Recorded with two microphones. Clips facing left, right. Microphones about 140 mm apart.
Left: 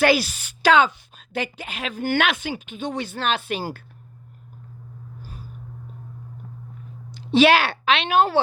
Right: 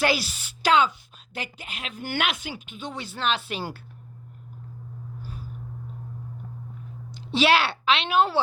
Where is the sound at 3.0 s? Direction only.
55° left (ahead or behind).